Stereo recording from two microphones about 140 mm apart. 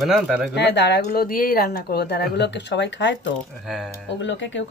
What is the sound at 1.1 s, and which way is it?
Speech, 90° left.